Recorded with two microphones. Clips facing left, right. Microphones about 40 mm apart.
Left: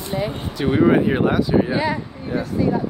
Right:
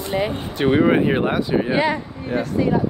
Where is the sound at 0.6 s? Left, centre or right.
Right.